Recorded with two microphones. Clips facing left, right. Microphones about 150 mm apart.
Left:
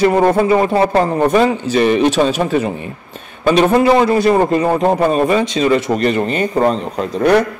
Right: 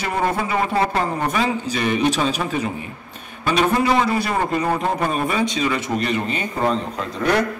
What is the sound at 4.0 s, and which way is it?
Speech, 70° left (ahead or behind).